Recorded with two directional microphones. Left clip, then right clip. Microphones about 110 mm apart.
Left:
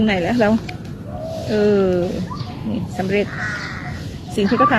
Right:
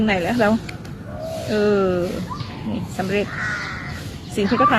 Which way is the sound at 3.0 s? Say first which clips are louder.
Left 3 dB; 15° right (ahead or behind).